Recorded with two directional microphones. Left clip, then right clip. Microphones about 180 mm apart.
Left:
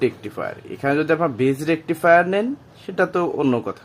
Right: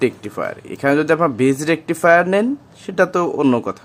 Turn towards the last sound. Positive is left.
turn(degrees=-15)  # may be behind; listen again after turning